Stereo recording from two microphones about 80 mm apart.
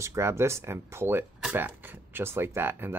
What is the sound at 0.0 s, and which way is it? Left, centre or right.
Speech, right.